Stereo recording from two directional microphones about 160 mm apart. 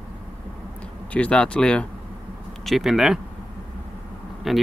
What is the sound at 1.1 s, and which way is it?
Speech, 5° left (ahead or behind).